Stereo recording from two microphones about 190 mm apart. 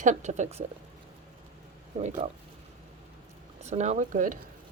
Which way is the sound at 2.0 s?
40° right (ahead or behind).